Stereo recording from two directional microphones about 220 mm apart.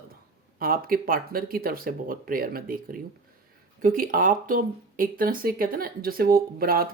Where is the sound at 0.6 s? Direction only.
40° right (ahead or behind).